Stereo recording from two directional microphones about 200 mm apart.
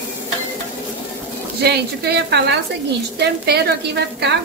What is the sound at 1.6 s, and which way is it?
Speech, 55° right (ahead or behind).